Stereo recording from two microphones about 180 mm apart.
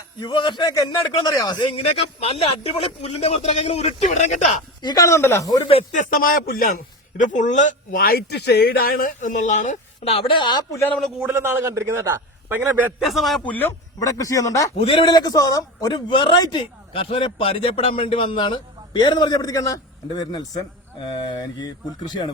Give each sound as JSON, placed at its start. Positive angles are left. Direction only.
{"t": 0.2, "sound": "a man's voice", "side_deg": 25}
{"t": 4.8, "sound": "a man's voice", "side_deg": 20}
{"t": 5.7, "sound": "a man's voice", "side_deg": 45}
{"t": 10.8, "sound": "a man's voice", "side_deg": 5}
{"t": 11.2, "sound": "a man's voice", "side_deg": -10}
{"t": 13.5, "sound": "speech", "side_deg": 10}
{"t": 14.8, "sound": "a man's voice", "side_deg": 30}